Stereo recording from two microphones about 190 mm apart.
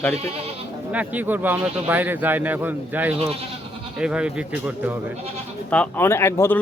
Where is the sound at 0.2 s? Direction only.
30° right (ahead or behind).